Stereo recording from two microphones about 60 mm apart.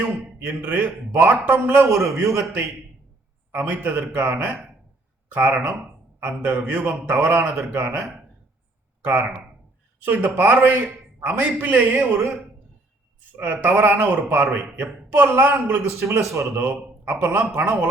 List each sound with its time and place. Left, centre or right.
0.3 s a man's voice: right
2.1 s a man's voice: right
3.5 s a man's voice: right
9.0 s a sound: right
10.0 s a man's voice: right
13.3 s a man's voice: right
15.9 s a man's voice: right
16.6 s a man's voice: right